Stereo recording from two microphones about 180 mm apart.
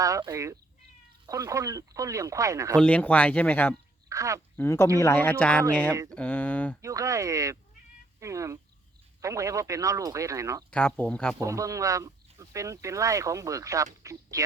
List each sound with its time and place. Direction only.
0.0 s speech: 20° right (ahead or behind)
2.7 s speech: 5° left (ahead or behind)
4.1 s speech: 15° right (ahead or behind)
4.5 s speech: 15° left (ahead or behind)
6.8 s speech: 15° right (ahead or behind)
10.7 s speech: 5° left (ahead or behind)
11.3 s speech: 20° right (ahead or behind)